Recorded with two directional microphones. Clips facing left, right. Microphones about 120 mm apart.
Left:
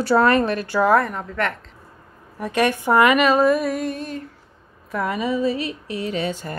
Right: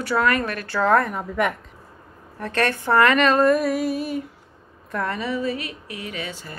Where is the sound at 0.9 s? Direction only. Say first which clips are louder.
Left 1 dB; centre (ahead or behind).